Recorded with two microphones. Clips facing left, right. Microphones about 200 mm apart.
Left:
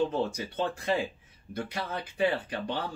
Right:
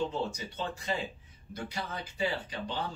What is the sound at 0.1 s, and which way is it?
Speech, 55° left (ahead or behind).